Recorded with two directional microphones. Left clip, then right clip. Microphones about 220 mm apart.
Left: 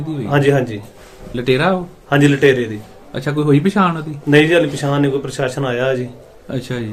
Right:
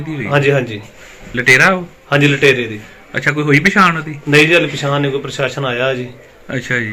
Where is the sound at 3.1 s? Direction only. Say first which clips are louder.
Right 3 dB; 20° right (ahead or behind).